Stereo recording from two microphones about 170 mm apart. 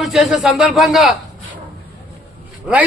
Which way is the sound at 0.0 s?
Centre (ahead or behind).